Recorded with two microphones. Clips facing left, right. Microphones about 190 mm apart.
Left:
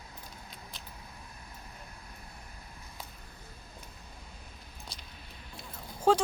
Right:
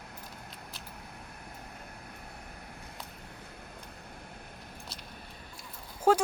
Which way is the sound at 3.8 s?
60° right (ahead or behind).